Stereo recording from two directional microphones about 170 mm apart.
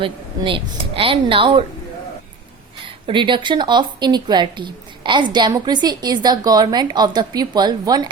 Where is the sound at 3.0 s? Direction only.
30° right (ahead or behind).